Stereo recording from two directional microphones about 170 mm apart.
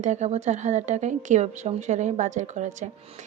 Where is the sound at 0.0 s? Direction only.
45° right (ahead or behind).